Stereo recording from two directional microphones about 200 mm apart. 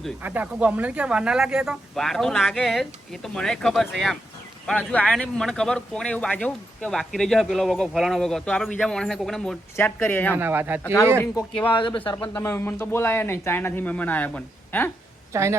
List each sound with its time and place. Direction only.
0.2 s speech: 10° right (ahead or behind); by 10.3 s 10° left (ahead or behind)
10.3 s speech: 10° right (ahead or behind)
11.2 s speech: 10° left (ahead or behind)
11.7 s speech: 25° left (ahead or behind)
12.2 s speech: 10° left (ahead or behind)
15.3 s speech: 15° right (ahead or behind)